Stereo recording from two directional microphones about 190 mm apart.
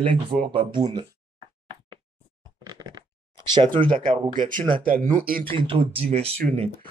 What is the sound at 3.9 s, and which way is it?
Speech, 45° right (ahead or behind).